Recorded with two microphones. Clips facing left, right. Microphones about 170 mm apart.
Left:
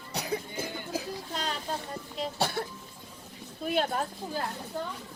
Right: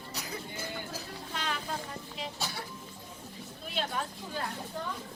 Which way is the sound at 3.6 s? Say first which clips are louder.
Left 7 dB; 55° left (ahead or behind).